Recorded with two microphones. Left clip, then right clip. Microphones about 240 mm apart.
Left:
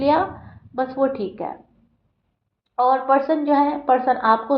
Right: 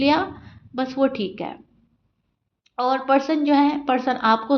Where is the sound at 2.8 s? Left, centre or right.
Right.